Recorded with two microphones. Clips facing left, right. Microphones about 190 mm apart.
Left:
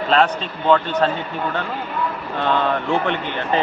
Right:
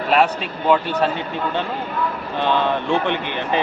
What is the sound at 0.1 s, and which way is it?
A man's voice, 10° right (ahead or behind).